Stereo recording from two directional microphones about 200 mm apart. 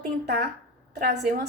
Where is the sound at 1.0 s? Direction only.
50° right (ahead or behind).